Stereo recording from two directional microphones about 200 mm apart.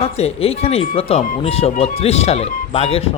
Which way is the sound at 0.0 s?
30° left (ahead or behind).